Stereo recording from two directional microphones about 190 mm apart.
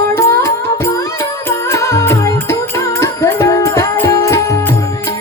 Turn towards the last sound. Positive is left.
turn(degrees=15)  # may be behind; listen again after turning